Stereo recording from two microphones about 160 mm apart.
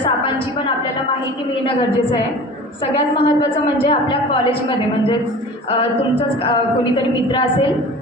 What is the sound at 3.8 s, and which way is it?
A woman's voice, 30° left (ahead or behind).